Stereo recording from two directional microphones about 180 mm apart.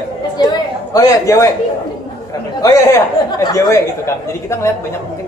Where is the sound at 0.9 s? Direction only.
15° left (ahead or behind).